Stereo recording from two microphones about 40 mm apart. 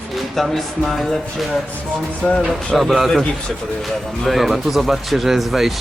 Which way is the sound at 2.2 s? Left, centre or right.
Right.